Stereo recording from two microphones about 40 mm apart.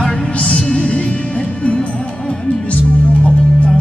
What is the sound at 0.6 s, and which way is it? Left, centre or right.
Music, left.